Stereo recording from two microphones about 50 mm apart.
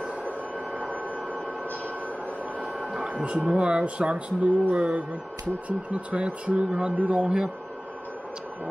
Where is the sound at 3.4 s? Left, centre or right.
Right.